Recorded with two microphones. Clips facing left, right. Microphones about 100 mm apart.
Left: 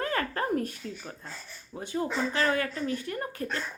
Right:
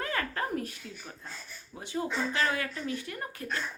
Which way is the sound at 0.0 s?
35° left (ahead or behind).